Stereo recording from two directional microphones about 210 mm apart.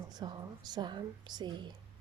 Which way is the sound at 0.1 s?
20° right (ahead or behind).